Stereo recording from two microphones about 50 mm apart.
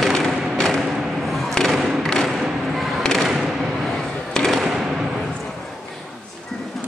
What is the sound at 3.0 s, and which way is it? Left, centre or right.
Thump, centre.